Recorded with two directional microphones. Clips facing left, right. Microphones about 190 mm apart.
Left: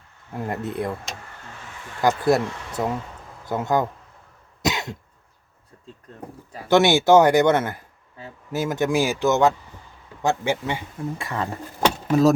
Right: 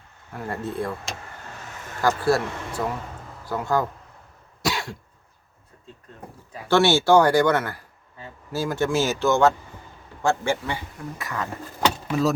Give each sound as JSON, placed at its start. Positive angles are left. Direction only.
{"t": 0.3, "sound": "speech", "side_deg": 20}
{"t": 1.6, "sound": "a sound", "side_deg": -45}
{"t": 2.0, "sound": "speech", "side_deg": 20}
{"t": 4.6, "sound": "cough", "side_deg": 20}
{"t": 6.7, "sound": "speech", "side_deg": 15}
{"t": 12.0, "sound": "speech", "side_deg": 45}